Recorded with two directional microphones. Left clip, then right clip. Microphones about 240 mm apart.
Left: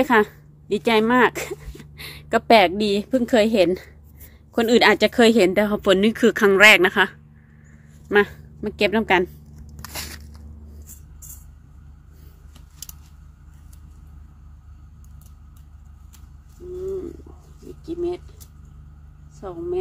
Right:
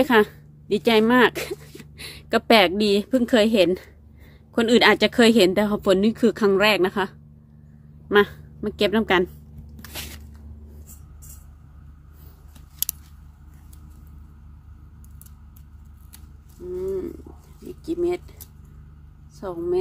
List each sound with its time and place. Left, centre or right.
0.0 s a woman's voice: centre
12.9 s scissors: right
17.8 s a sound: right